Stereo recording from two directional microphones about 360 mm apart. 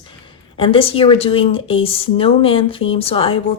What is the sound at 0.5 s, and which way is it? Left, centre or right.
Speech, centre.